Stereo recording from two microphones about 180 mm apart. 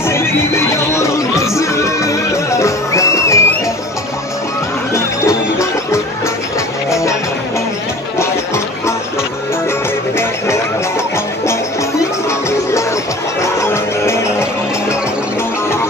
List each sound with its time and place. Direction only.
0.1 s music: 15° left (ahead or behind)
4.9 s music: 15° left (ahead or behind)
12.3 s music: 15° left (ahead or behind)